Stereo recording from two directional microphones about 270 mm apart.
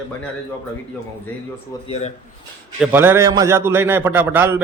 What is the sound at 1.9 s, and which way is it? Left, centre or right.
Speech, left.